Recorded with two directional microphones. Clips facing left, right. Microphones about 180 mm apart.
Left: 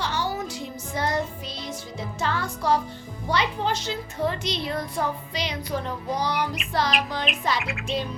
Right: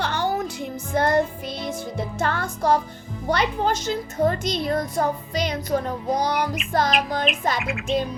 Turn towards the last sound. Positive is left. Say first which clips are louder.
# right 5 dB
turn(degrees=0)  # may be behind; listen again after turning